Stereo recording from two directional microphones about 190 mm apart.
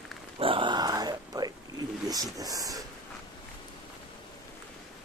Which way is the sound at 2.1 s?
20° right (ahead or behind).